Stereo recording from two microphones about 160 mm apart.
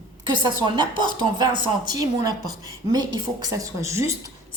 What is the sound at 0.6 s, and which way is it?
A woman's voice, 30° right (ahead or behind).